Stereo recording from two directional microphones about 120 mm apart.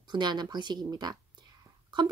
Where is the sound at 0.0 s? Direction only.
35° right (ahead or behind).